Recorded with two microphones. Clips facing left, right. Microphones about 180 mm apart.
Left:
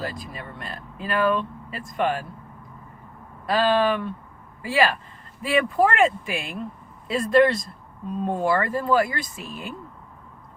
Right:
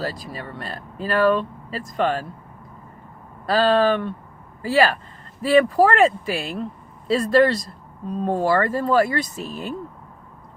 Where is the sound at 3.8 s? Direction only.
35° right (ahead or behind).